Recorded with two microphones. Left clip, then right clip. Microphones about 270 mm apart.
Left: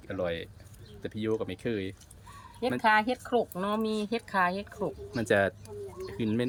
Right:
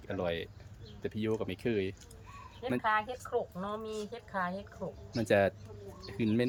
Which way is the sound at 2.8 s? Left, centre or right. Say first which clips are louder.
Left 7 dB; left.